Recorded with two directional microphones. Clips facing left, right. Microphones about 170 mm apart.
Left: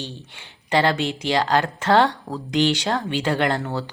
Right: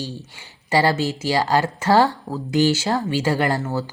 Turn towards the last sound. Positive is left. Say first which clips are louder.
# right 1 dB
turn(degrees=-5)  # may be behind; listen again after turning